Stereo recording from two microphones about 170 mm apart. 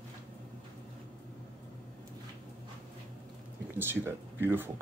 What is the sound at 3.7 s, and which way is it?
Speech, 15° right (ahead or behind).